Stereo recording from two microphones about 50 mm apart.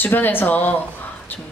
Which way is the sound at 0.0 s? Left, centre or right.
Left.